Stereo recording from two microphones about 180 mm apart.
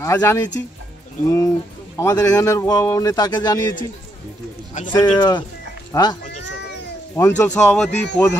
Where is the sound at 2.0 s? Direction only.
15° left (ahead or behind).